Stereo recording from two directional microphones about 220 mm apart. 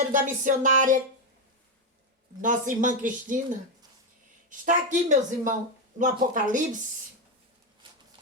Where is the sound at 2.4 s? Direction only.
35° right (ahead or behind).